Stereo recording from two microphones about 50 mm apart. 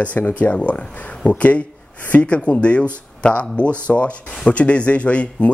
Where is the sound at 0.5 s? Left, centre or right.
Left.